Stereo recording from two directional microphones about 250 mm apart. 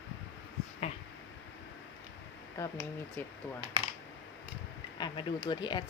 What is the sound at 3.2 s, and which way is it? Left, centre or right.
Speech, centre.